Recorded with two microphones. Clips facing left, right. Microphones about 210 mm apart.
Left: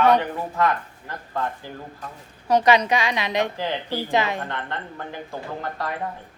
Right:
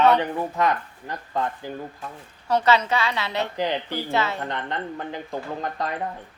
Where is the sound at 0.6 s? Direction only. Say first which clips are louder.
Left 3 dB; 20° right (ahead or behind).